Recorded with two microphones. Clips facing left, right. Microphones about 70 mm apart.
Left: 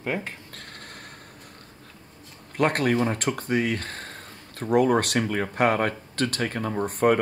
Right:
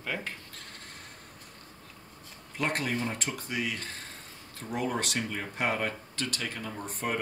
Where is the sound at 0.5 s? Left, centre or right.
Left.